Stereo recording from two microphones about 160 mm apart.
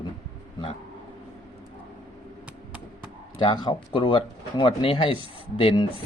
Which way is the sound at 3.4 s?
30° left (ahead or behind).